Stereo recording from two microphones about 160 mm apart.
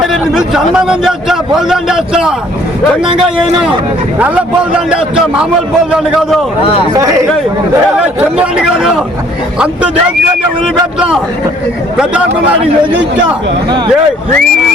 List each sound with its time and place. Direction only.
0.0 s a man's voice: centre (ahead or behind)
6.9 s speech: 20° right (ahead or behind)
7.9 s a man's voice: 5° right (ahead or behind)
13.7 s speech: 30° right (ahead or behind)